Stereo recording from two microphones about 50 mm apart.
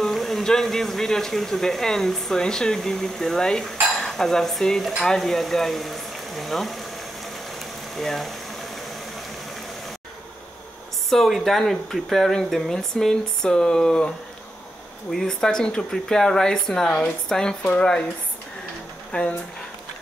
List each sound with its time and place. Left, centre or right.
0.0 s speech: centre
4.0 s dishes: centre
5.0 s speech: centre
7.5 s boiling: centre
11.1 s speech: centre
19.1 s speech: left